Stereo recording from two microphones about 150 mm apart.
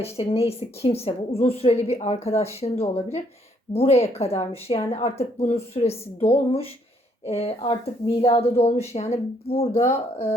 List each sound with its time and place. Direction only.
0.0 s speech: 40° left (ahead or behind)